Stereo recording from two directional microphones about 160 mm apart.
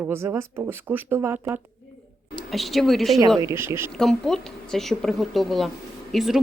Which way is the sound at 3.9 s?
Centre (ahead or behind).